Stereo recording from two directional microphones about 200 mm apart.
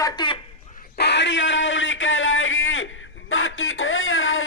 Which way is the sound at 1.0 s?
60° left (ahead or behind).